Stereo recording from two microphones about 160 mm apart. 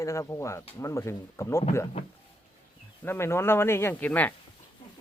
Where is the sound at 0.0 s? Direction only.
20° left (ahead or behind).